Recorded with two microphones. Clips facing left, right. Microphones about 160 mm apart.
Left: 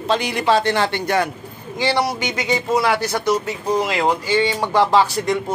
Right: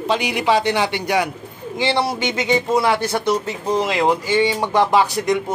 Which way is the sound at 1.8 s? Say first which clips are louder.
Even; 25° right (ahead or behind).